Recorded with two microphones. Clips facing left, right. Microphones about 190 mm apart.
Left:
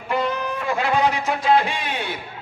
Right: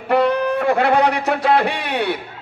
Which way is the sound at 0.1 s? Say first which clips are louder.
Right 7 dB; 65° right (ahead or behind).